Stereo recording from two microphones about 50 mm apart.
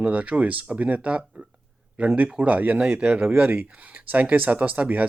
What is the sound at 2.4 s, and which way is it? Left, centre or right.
Speech, right.